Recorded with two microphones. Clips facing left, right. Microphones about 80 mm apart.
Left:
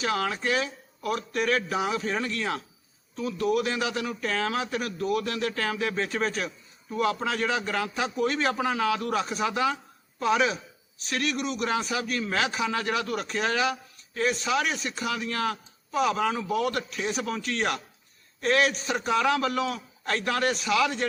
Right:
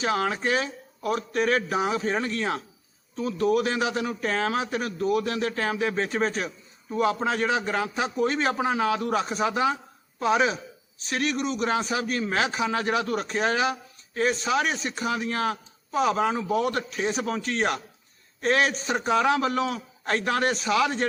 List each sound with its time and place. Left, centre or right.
0.0 s a man's voice: right